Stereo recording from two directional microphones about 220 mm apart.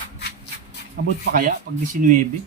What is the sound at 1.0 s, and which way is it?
Speech, 45° right (ahead or behind).